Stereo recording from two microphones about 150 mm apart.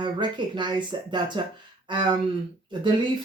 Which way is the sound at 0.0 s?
30° right (ahead or behind).